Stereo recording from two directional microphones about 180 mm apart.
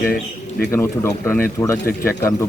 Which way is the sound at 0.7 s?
15° left (ahead or behind).